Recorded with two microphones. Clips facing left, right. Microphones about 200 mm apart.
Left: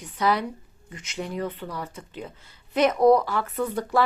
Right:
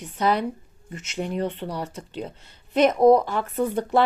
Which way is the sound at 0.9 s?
35° right (ahead or behind).